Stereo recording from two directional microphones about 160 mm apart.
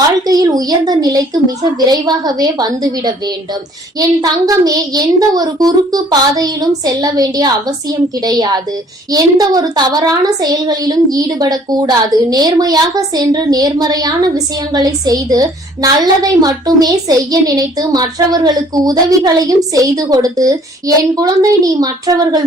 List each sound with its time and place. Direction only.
0.3 s a woman's voice: 25° right (ahead or behind)
4.2 s a woman's voice: 25° right (ahead or behind)